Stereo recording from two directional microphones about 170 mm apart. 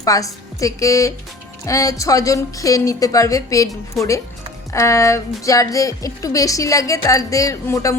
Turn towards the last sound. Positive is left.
turn(degrees=20)  # may be behind; listen again after turning